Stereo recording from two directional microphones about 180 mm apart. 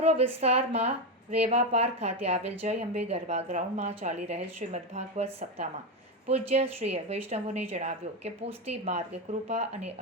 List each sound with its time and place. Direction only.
0.0 s a woman's voice: 35° right (ahead or behind)